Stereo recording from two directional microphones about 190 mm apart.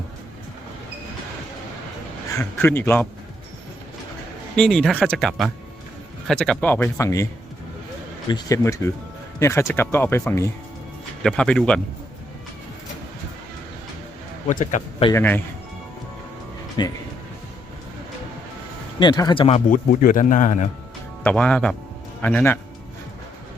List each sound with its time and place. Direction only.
2.4 s speech: 10° left (ahead or behind)
4.5 s speech: 5° left (ahead or behind)
8.3 s speech: 20° left (ahead or behind)
11.2 s speech: 5° left (ahead or behind)
14.4 s speech: 40° left (ahead or behind)
15.1 s speech: 10° left (ahead or behind)
16.8 s speech: 20° left (ahead or behind)
18.9 s speech: 20° left (ahead or behind); by 20.7 s 40° left (ahead or behind)
21.2 s speech: 5° left (ahead or behind)